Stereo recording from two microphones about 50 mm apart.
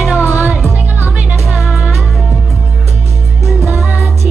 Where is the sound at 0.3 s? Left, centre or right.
Right.